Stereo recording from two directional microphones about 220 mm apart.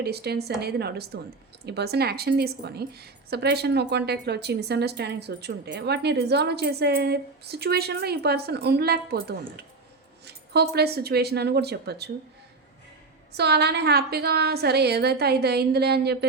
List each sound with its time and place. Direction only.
0.0 s a woman's voice: 45° right (ahead or behind)
10.2 s a woman's voice: 50° right (ahead or behind)
13.3 s a woman's voice: 50° right (ahead or behind)